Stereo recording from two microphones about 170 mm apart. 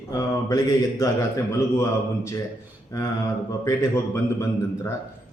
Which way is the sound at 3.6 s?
15° left (ahead or behind).